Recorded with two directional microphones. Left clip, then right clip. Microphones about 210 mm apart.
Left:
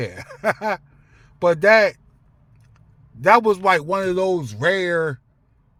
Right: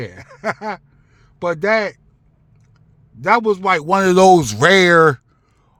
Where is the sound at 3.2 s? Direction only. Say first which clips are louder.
Left 1 dB; 5° right (ahead or behind).